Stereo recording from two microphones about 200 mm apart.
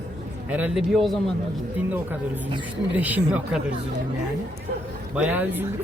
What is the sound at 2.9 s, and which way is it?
Speech, 5° right (ahead or behind).